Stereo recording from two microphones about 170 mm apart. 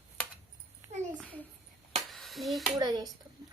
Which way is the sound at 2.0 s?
Centre (ahead or behind).